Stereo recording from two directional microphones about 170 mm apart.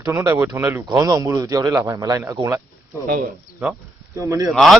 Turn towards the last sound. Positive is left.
turn(degrees=0)  # may be behind; listen again after turning